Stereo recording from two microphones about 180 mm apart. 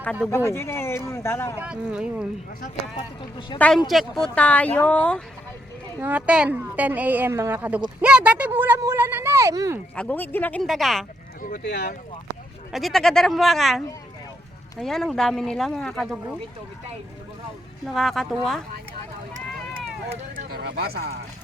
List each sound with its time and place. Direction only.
0.3 s speech: 15° left (ahead or behind)
1.5 s speech: 5° right (ahead or behind)
2.9 s speech: 25° left (ahead or behind)
3.8 s speech: centre (ahead or behind)
6.0 s a woman's voice: 10° right (ahead or behind)
9.9 s speech: 5° left (ahead or behind)
11.4 s speech: 60° left (ahead or behind)
12.7 s speech: centre (ahead or behind)
17.8 s speech: centre (ahead or behind)
20.3 s speech: 60° right (ahead or behind)